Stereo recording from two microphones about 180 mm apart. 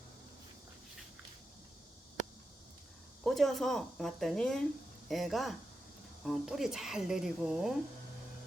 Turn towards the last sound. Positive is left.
turn(degrees=0)  # may be behind; listen again after turning